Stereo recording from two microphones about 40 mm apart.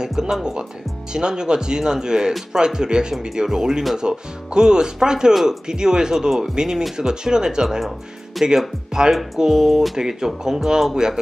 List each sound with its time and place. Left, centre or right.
0.0 s speech: centre
5.3 s speech: centre
5.7 s speech: centre